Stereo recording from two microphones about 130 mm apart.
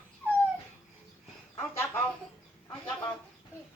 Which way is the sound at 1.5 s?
15° left (ahead or behind).